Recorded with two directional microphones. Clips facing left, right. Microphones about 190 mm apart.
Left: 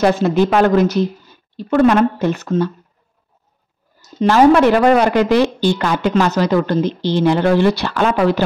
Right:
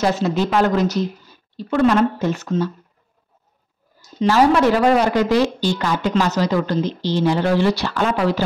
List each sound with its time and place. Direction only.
0.0 s speech: 55° left (ahead or behind)
4.2 s speech: 55° left (ahead or behind)